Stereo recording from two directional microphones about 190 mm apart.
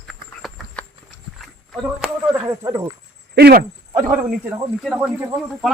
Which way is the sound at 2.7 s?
20° right (ahead or behind).